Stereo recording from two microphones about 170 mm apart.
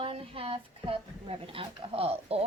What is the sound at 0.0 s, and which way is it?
A woman's voice, 35° right (ahead or behind).